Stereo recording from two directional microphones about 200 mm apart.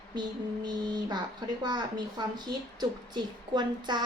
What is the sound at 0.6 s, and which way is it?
A woman's voice, 20° right (ahead or behind).